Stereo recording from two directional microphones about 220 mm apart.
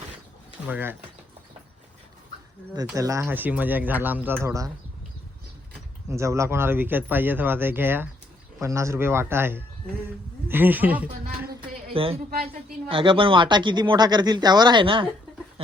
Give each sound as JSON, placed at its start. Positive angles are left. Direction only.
{"t": 0.7, "sound": "speech", "side_deg": -10}
{"t": 2.8, "sound": "speech", "side_deg": -15}
{"t": 6.1, "sound": "speech", "side_deg": -15}
{"t": 11.9, "sound": "speech", "side_deg": -25}